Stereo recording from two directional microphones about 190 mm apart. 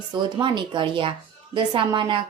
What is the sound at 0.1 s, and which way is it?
A woman's voice, 25° right (ahead or behind).